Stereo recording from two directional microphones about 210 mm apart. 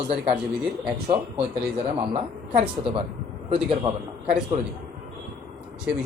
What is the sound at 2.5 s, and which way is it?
Speech, 25° right (ahead or behind).